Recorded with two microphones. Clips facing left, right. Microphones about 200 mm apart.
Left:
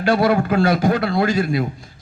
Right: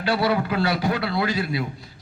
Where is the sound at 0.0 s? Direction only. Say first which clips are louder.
Left 5 dB; 50° left (ahead or behind).